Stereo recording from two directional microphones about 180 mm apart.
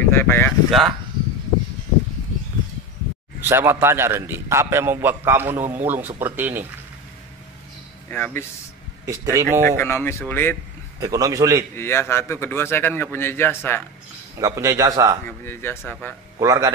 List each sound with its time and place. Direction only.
0.0 s speech: 10° left (ahead or behind)
0.7 s speech: centre (ahead or behind)
3.3 s a man's voice: 10° right (ahead or behind)
8.1 s a man's voice: 10° left (ahead or behind)
9.0 s a man's voice: 15° right (ahead or behind)
9.8 s a man's voice: 10° left (ahead or behind)
11.0 s a man's voice: 20° right (ahead or behind)
11.7 s a man's voice: 15° left (ahead or behind)
14.4 s a man's voice: 20° right (ahead or behind)
15.2 s a man's voice: 10° left (ahead or behind)
16.3 s a man's voice: 20° right (ahead or behind)